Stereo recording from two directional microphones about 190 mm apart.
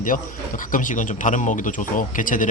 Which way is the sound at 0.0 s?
45° left (ahead or behind).